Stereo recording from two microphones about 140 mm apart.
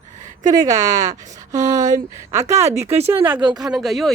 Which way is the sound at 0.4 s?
25° right (ahead or behind).